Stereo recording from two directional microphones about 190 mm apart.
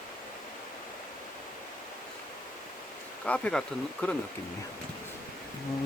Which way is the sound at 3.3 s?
5° left (ahead or behind).